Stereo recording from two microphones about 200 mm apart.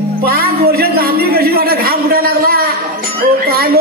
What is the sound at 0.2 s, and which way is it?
Music, 50° right (ahead or behind).